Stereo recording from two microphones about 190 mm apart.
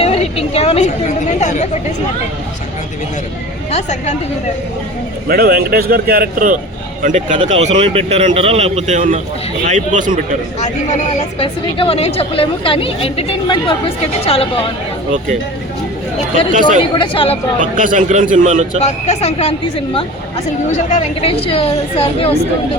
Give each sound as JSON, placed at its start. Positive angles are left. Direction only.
{"t": 0.0, "sound": "speech", "side_deg": 30}
{"t": 3.7, "sound": "speech", "side_deg": 35}
{"t": 5.3, "sound": "speech", "side_deg": -50}
{"t": 11.2, "sound": "a woman's voice", "side_deg": 30}
{"t": 16.5, "sound": "speech", "side_deg": -45}
{"t": 16.9, "sound": "a woman's voice", "side_deg": 25}
{"t": 17.7, "sound": "speech", "side_deg": -45}
{"t": 18.8, "sound": "speech", "side_deg": 35}